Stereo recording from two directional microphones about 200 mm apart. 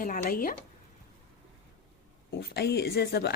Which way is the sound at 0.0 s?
45° left (ahead or behind).